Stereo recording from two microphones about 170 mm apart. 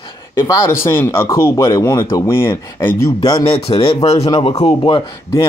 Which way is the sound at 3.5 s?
30° left (ahead or behind).